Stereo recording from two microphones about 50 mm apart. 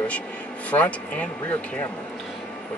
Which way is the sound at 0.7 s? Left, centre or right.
Left.